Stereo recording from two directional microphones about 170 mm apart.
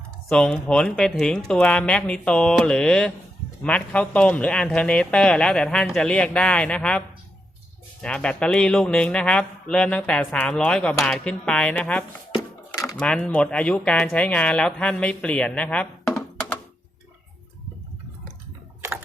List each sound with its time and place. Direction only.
0.3 s speech: 5° left (ahead or behind)
8.0 s speech: 5° left (ahead or behind)
12.7 s a sound: 20° left (ahead or behind)
13.0 s speech: 5° left (ahead or behind)